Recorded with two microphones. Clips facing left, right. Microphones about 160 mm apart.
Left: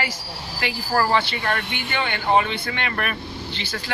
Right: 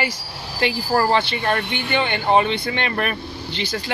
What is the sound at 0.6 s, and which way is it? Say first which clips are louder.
Speech: right 3 dB; 25° right (ahead or behind).